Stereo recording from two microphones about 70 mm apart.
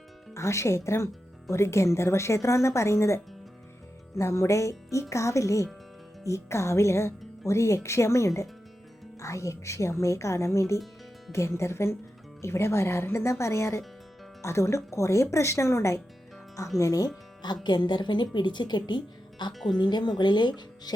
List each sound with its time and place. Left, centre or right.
0.3 s speech: left
4.2 s a woman's voice: left
16.7 s speech: left
17.4 s speech: left